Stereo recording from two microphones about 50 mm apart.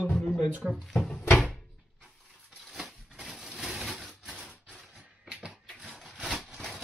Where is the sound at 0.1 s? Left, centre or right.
Left.